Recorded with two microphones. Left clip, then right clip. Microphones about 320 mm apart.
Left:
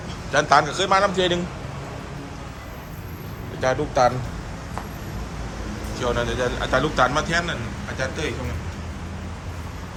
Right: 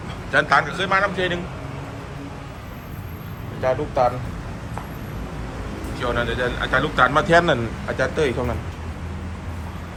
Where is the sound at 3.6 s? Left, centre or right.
Left.